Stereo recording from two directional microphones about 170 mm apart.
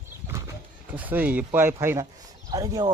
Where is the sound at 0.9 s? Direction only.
10° right (ahead or behind).